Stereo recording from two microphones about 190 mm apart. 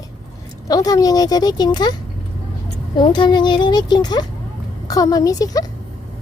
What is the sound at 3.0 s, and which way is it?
Speech, 25° left (ahead or behind).